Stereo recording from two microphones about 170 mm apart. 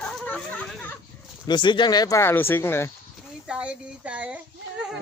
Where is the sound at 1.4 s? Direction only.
25° left (ahead or behind).